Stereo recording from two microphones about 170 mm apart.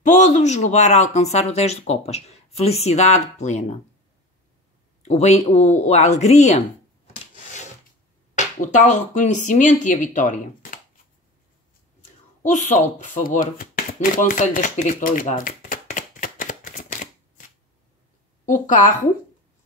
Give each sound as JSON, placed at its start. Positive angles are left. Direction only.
{"t": 0.0, "sound": "speech", "side_deg": 45}
{"t": 5.0, "sound": "speech", "side_deg": 40}
{"t": 8.4, "sound": "speech", "side_deg": 45}
{"t": 12.0, "sound": "speech", "side_deg": 50}
{"t": 14.1, "sound": "a sound", "side_deg": 50}
{"t": 18.4, "sound": "a woman's voice", "side_deg": 50}